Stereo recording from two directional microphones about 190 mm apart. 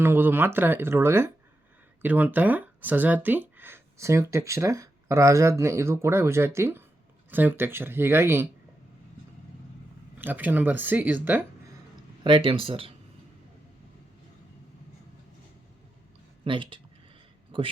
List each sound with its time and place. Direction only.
0.0 s speech: 10° right (ahead or behind)
10.2 s speech: 10° right (ahead or behind)
12.2 s speech: 25° right (ahead or behind)
16.4 s speech: 25° right (ahead or behind)